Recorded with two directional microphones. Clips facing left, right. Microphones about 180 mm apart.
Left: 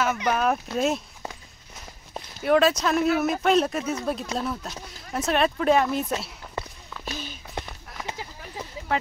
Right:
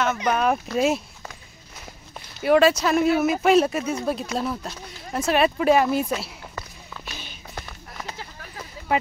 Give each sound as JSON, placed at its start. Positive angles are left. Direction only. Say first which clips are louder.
{"t": 0.0, "sound": "speech", "louder": "right 2 dB", "side_deg": 5}
{"t": 2.4, "sound": "speech", "louder": "right 3 dB", "side_deg": 0}
{"t": 8.1, "sound": "a sound", "louder": "left 2 dB", "side_deg": 15}